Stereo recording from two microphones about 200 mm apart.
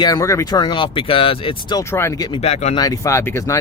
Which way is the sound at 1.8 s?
15° left (ahead or behind).